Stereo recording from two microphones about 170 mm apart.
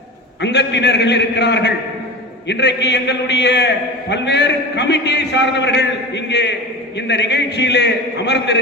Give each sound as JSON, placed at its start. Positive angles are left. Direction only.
{"t": 0.4, "sound": "a man's voice", "side_deg": 90}